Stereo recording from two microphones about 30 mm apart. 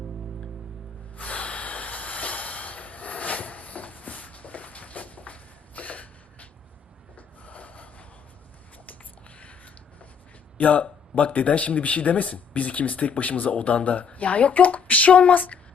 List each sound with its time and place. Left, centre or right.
1.1 s snort: left
9.4 s a sound: left
10.6 s speech: left